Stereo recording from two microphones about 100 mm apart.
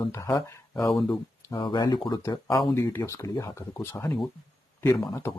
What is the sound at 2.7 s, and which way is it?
Speech, 30° left (ahead or behind).